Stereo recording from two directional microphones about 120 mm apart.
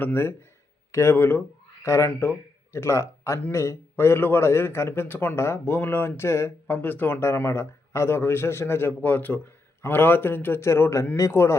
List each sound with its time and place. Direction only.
0.0 s a man's voice: 20° left (ahead or behind)